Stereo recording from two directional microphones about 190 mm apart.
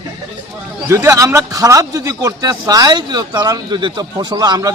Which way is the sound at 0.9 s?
15° right (ahead or behind).